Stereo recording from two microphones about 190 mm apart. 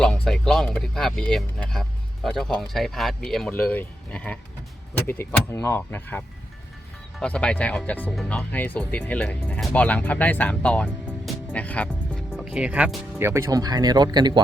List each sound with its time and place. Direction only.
0.0 s speech: 5° left (ahead or behind)
11.5 s music: 5° left (ahead or behind)
12.5 s speech: 5° right (ahead or behind); by 14.4 s 20° right (ahead or behind)